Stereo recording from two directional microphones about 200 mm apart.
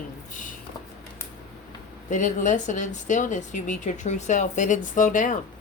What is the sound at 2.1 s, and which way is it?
Speech, 40° left (ahead or behind).